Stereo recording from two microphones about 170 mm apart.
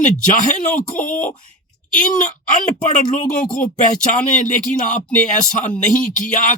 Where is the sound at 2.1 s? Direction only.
50° left (ahead or behind).